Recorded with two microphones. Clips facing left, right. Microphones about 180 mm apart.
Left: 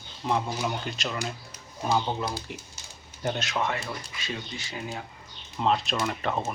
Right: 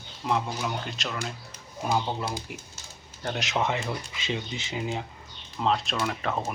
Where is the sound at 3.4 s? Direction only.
20° right (ahead or behind).